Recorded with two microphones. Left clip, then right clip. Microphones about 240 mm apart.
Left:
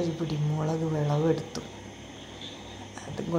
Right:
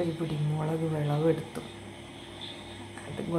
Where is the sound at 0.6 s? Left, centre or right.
Centre.